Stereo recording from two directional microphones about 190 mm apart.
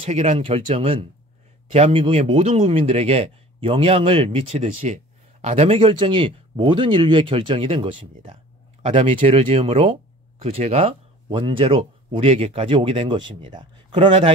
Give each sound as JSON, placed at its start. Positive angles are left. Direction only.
{"t": 0.0, "sound": "speech", "side_deg": -35}